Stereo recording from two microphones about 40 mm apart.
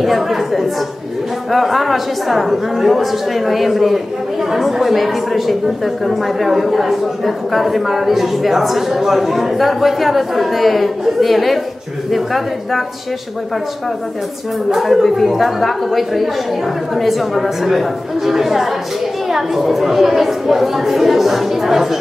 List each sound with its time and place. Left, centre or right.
0.0 s a woman's voice: centre
14.7 s a woman's voice: centre